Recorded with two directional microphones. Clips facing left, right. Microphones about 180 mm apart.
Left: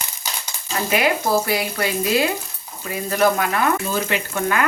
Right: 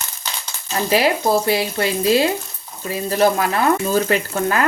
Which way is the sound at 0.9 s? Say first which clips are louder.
Right 2 dB; 30° right (ahead or behind).